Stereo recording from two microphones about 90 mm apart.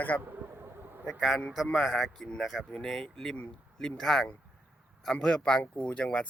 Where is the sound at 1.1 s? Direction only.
Centre (ahead or behind).